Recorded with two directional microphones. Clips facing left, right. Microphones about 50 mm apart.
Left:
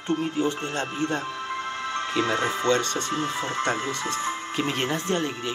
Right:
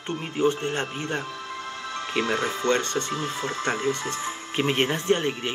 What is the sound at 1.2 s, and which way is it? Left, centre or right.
Music, left.